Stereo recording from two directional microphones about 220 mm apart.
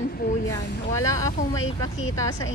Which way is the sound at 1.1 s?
15° left (ahead or behind).